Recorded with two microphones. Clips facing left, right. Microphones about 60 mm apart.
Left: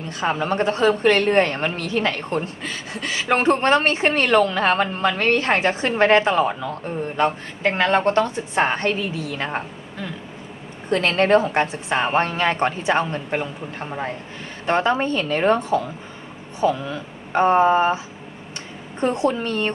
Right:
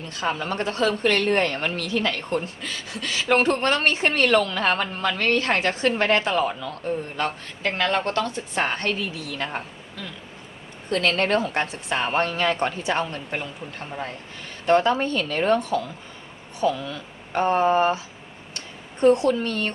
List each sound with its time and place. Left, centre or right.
0.2 s a woman's voice: left